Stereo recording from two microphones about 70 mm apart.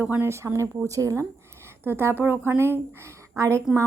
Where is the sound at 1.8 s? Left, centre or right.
Right.